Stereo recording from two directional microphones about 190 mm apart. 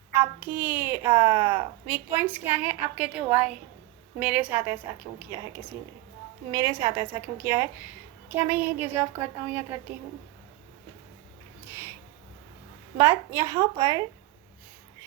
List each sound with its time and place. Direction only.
0.2 s a woman's voice: 10° right (ahead or behind)
13.0 s a woman's voice: 15° right (ahead or behind)